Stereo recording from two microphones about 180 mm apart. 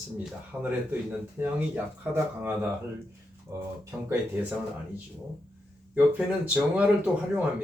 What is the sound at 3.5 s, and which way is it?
Speech, 15° right (ahead or behind).